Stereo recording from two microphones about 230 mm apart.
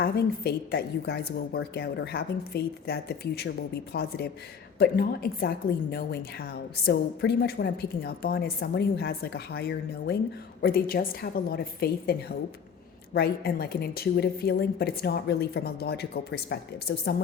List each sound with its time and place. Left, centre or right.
0.0 s a woman's voice: left
13.1 s a woman's voice: left